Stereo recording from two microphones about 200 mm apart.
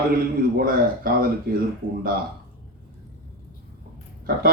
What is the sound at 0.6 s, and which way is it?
Speech, 45° right (ahead or behind).